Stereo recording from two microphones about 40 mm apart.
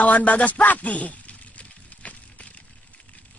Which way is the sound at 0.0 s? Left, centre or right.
Left.